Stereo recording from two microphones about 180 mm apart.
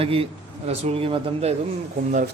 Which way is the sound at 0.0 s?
30° right (ahead or behind).